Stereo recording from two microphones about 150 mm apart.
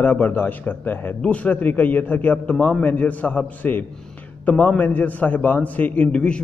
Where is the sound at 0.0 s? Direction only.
10° left (ahead or behind).